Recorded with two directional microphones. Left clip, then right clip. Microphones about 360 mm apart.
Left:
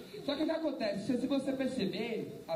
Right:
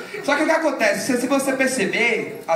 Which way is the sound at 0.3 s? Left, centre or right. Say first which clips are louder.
Right 16 dB; right.